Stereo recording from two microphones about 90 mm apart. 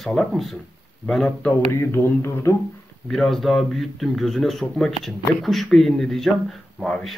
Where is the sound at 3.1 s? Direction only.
Centre (ahead or behind).